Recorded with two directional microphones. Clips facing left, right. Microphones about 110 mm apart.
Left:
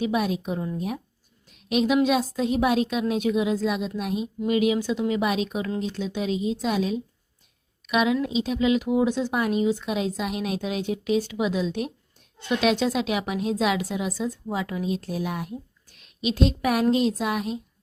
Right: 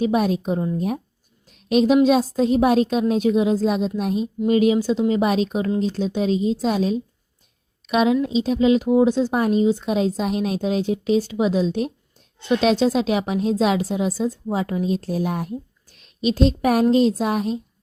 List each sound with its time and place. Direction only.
0.0 s speech: 40° right (ahead or behind)
1.5 s a sound: 40° right (ahead or behind)
2.0 s speech: 35° right (ahead or behind)